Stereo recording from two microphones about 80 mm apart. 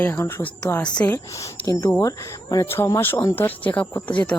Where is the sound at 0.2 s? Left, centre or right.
Left.